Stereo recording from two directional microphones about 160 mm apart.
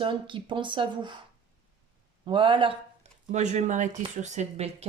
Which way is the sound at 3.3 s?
45° right (ahead or behind).